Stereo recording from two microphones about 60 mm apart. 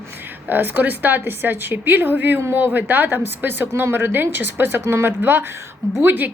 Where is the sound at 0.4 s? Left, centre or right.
Right.